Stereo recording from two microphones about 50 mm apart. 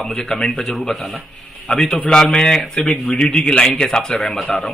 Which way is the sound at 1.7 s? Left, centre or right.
Centre.